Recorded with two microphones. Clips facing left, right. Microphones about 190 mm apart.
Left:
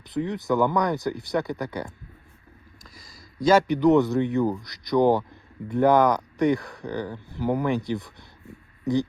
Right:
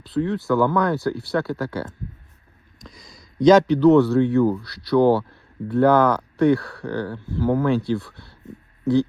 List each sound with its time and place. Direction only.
0.0 s speech: 15° left (ahead or behind)
2.8 s a sound: centre (ahead or behind)
3.4 s speech: 10° left (ahead or behind)